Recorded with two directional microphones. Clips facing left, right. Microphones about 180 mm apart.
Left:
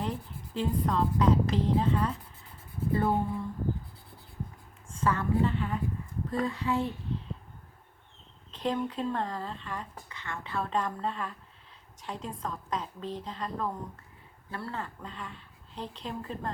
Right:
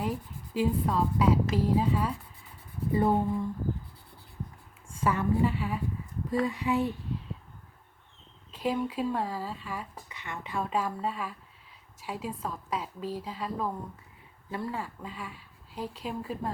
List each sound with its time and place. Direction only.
0.0 s a woman's voice: 10° right (ahead or behind)
4.9 s a woman's voice: 10° right (ahead or behind)
8.5 s speech: 10° right (ahead or behind)